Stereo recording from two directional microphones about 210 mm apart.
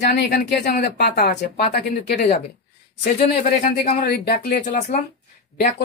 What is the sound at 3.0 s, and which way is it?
A man's voice, 40° left (ahead or behind).